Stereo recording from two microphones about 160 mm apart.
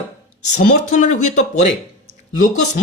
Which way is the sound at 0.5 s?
55° left (ahead or behind).